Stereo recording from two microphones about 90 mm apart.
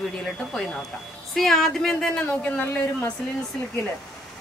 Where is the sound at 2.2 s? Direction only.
20° left (ahead or behind).